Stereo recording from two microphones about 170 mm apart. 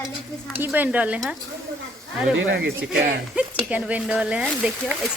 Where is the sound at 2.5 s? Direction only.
90° right.